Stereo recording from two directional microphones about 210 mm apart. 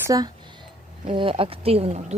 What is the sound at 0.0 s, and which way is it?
Speech, 15° right (ahead or behind).